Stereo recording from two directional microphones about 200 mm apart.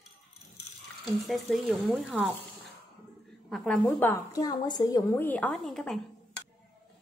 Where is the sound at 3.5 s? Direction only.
Centre (ahead or behind).